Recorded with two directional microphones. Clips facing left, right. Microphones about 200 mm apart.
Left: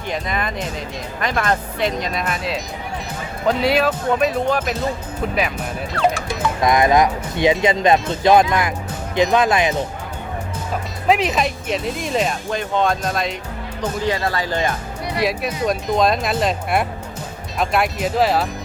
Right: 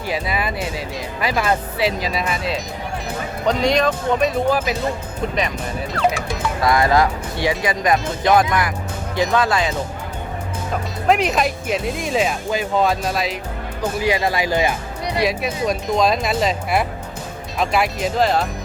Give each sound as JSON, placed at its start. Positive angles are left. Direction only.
{"t": 0.1, "sound": "speech", "side_deg": -5}
{"t": 6.6, "sound": "speech", "side_deg": 20}
{"t": 11.1, "sound": "speech", "side_deg": 0}
{"t": 15.2, "sound": "speech", "side_deg": 0}